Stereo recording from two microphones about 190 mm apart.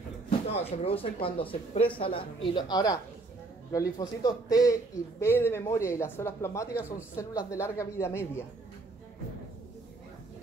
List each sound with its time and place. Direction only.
0.5 s speech: 30° left (ahead or behind); by 8.3 s 15° left (ahead or behind)